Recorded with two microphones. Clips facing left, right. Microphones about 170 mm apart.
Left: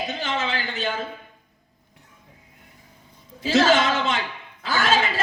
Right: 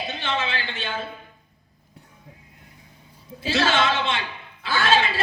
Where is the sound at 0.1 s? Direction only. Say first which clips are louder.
Left 1 dB; 40° left (ahead or behind).